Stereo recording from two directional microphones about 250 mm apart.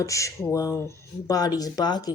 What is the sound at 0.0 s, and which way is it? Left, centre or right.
Speech, centre.